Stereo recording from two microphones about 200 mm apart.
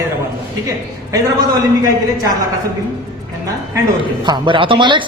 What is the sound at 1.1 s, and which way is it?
Speech, 15° right (ahead or behind).